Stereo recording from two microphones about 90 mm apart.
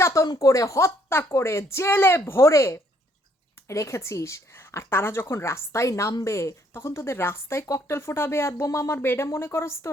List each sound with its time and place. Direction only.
0.0 s a woman's voice: 30° left (ahead or behind)